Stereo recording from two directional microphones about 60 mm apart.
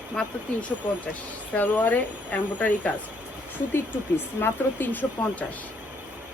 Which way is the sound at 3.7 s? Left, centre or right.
Left.